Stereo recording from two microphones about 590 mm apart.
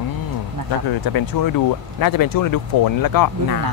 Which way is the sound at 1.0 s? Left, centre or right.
Left.